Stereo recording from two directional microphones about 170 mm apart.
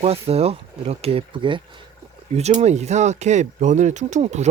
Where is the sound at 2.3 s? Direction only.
40° right (ahead or behind).